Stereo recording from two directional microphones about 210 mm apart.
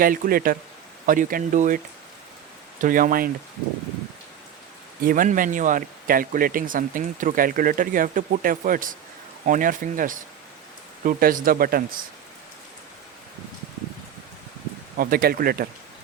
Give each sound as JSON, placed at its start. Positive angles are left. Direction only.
{"t": 0.0, "sound": "speech", "side_deg": -45}
{"t": 2.8, "sound": "speech", "side_deg": -40}
{"t": 5.0, "sound": "speech", "side_deg": -40}
{"t": 14.9, "sound": "speech", "side_deg": -45}